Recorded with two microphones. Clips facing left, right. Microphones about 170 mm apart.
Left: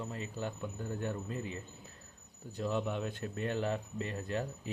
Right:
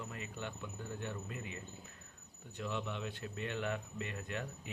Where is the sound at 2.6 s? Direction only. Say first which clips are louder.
Left 6 dB; 40° left (ahead or behind).